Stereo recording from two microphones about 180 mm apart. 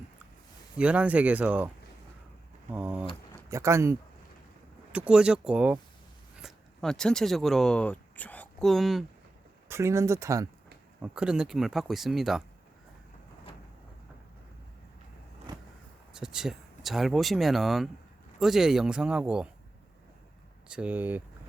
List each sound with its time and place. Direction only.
0.8 s speech: 5° right (ahead or behind)
9.6 s speech: 15° right (ahead or behind)
11.0 s speech: 5° right (ahead or behind)
15.5 s vehicle: 25° right (ahead or behind)
16.1 s speech: 5° right (ahead or behind)
20.7 s speech: 5° right (ahead or behind)